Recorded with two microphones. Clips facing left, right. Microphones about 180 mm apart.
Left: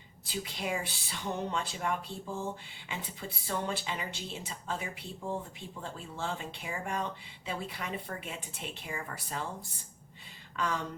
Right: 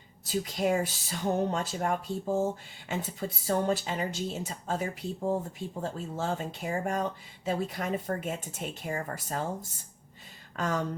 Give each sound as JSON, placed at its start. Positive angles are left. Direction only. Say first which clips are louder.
{"t": 0.3, "sound": "speech", "louder": "right 8 dB", "side_deg": -45}
{"t": 10.6, "sound": "speech", "louder": "right 3 dB", "side_deg": -45}